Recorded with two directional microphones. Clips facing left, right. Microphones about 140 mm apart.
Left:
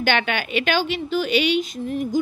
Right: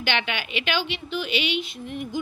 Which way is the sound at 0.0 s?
45° left (ahead or behind).